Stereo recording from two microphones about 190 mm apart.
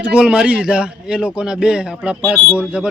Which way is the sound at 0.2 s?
5° right (ahead or behind).